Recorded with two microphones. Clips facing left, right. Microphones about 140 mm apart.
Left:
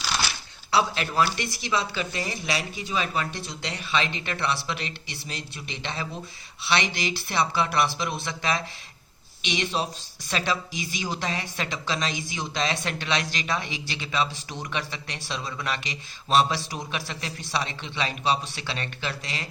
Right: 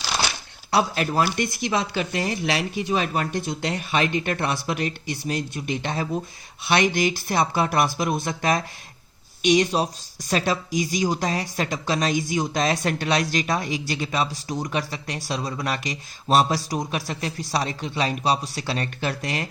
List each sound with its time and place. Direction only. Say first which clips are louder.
0.7 s speech: right 3 dB; 45° right (ahead or behind)